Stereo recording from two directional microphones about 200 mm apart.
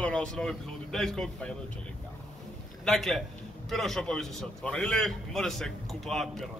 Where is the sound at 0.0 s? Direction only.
5° left (ahead or behind).